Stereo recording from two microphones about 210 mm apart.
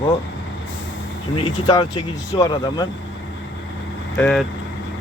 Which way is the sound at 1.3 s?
20° left (ahead or behind).